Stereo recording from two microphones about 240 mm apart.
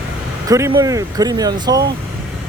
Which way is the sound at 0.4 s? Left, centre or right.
Centre.